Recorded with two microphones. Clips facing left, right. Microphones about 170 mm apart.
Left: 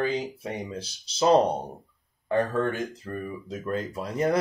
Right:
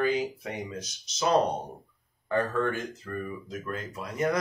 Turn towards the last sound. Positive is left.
turn(degrees=30)  # may be behind; listen again after turning